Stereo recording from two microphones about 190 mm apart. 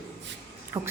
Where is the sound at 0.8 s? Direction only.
20° right (ahead or behind).